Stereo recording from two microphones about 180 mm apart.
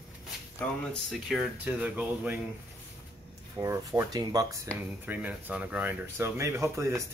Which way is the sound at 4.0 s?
20° right (ahead or behind).